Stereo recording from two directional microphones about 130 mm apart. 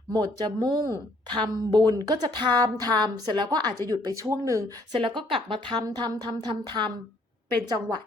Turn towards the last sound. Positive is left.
turn(degrees=-30)  # may be behind; listen again after turning